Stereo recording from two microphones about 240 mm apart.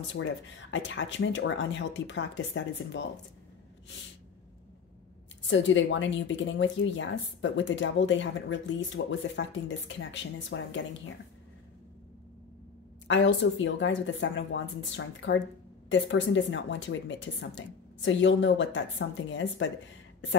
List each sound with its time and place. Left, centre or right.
0.1 s speech: left
5.5 s speech: left
13.1 s speech: left